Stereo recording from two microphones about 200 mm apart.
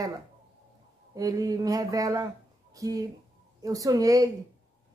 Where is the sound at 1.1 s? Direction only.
15° right (ahead or behind).